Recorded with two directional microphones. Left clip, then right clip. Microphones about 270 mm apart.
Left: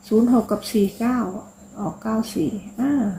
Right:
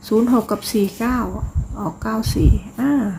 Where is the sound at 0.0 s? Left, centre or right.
Centre.